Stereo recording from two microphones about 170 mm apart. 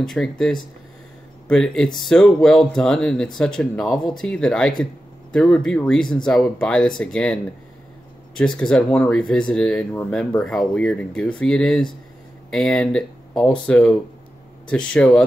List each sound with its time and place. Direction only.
0.0 s speech: 5° left (ahead or behind)
8.4 s speech: 5° left (ahead or behind)